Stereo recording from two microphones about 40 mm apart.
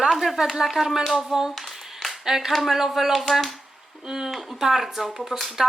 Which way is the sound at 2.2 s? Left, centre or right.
Centre.